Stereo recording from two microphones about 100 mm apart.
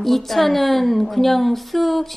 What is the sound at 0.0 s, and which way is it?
A woman's voice, centre (ahead or behind).